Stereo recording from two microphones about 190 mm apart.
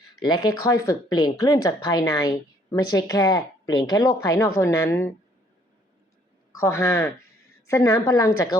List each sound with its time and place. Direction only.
0.3 s speech: 20° left (ahead or behind)
6.6 s a woman's voice: 15° left (ahead or behind)